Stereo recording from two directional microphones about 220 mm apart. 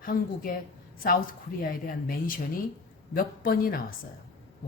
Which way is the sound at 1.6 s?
40° left (ahead or behind).